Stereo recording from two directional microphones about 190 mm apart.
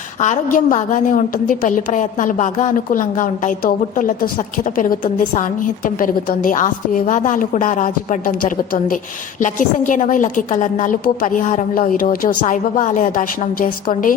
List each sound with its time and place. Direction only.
0.2 s a woman's voice: 45° left (ahead or behind)